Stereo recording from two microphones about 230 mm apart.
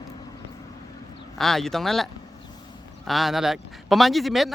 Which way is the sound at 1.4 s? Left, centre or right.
Centre.